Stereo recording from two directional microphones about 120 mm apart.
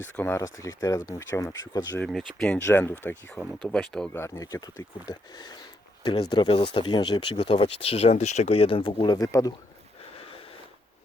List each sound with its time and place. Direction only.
0.0 s speech: 20° left (ahead or behind)
2.0 s speech: centre (ahead or behind)
2.6 s speech: 20° left (ahead or behind)
3.6 s speech: 5° left (ahead or behind)
4.1 s speech: 25° left (ahead or behind); by 9.2 s 40° left (ahead or behind)
9.2 s speech: 30° left (ahead or behind)